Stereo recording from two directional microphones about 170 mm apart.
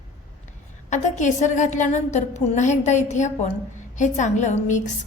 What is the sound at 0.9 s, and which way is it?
A woman's voice, 45° left (ahead or behind).